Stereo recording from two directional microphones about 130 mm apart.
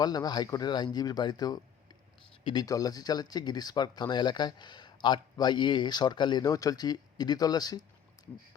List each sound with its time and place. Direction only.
0.0 s speech: 30° left (ahead or behind)
2.6 s speech: 30° left (ahead or behind)